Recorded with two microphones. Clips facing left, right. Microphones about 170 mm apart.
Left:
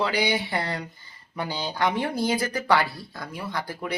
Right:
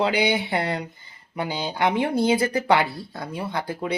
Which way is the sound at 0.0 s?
20° right (ahead or behind).